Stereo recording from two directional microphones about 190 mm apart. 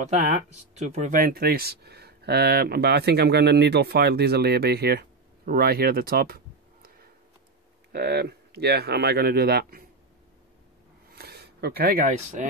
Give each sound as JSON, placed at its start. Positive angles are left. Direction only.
{"t": 0.1, "sound": "speech", "side_deg": -40}
{"t": 11.1, "sound": "speech", "side_deg": -55}